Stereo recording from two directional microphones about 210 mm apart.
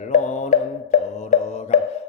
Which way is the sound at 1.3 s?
35° left (ahead or behind).